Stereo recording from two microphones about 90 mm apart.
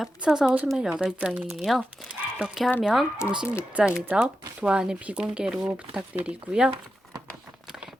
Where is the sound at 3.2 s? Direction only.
30° left (ahead or behind).